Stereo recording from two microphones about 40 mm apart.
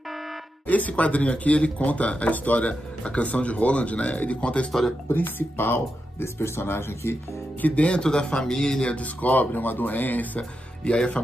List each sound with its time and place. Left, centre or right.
0.7 s speech: left
5.0 s speech: left
7.6 s speech: left; by 8.8 s centre
8.8 s speech: left
10.8 s speech: left